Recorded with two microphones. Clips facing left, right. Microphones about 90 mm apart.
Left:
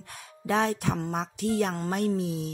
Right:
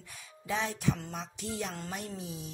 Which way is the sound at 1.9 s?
75° left (ahead or behind).